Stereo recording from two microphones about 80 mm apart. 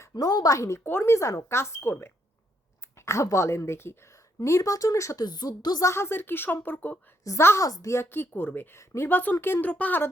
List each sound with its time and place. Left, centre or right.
0.0 s a woman's voice: left
0.9 s speech: left
5.2 s a woman's voice: left
5.9 s a woman's voice: left
7.3 s a woman's voice: left